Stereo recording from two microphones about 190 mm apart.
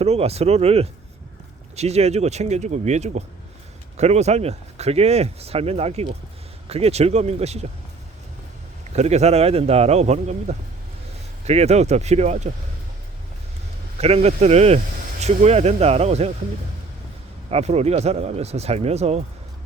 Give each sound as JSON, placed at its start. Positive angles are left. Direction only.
{"t": 0.0, "sound": "speech", "side_deg": -35}
{"t": 9.0, "sound": "speech", "side_deg": -35}
{"t": 14.0, "sound": "speech", "side_deg": -35}
{"t": 17.5, "sound": "speech", "side_deg": -35}